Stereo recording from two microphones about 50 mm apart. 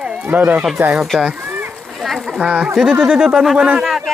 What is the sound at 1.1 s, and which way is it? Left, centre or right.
Speech, centre.